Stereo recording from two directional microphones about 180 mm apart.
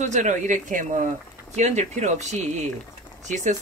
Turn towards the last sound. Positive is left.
turn(degrees=-40)  # may be behind; listen again after turning